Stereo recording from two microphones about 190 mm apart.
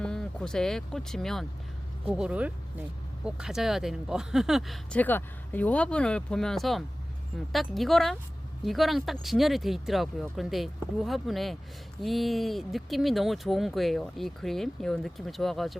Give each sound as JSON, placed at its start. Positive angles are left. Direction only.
{"t": 0.0, "sound": "speech", "side_deg": 5}